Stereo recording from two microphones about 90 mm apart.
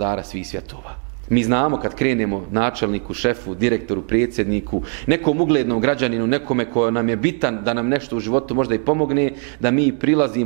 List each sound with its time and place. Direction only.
1.3 s a man's voice: 15° right (ahead or behind)